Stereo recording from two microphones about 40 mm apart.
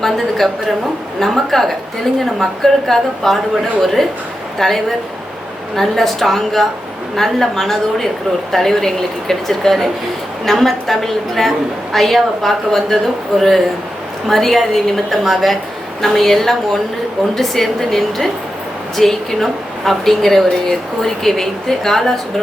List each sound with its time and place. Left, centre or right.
0.0 s a woman's voice: centre